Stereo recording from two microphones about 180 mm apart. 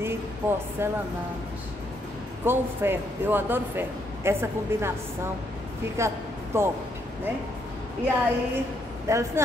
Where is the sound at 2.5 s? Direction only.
10° right (ahead or behind).